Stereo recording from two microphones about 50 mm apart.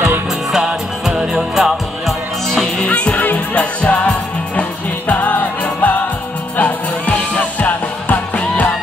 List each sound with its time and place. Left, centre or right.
0.5 s music: centre
2.9 s music: left